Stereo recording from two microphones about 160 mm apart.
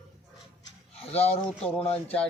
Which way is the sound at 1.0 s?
40° left (ahead or behind).